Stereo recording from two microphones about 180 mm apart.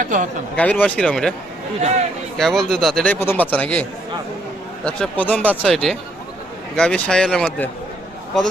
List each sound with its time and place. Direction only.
0.0 s a man's voice: 45° right (ahead or behind)
0.5 s a man's voice: 10° left (ahead or behind)
2.4 s a man's voice: centre (ahead or behind)
4.9 s a man's voice: 5° left (ahead or behind)